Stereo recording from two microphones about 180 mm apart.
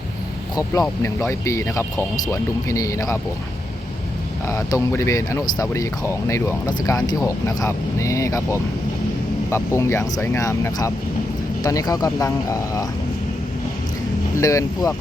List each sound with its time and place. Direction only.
0.5 s speech: 20° left (ahead or behind)
4.4 s speech: 15° left (ahead or behind)
14.3 s speech: 15° left (ahead or behind)